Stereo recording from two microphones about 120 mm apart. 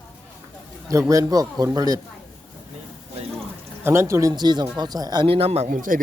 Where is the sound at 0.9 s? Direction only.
25° right (ahead or behind).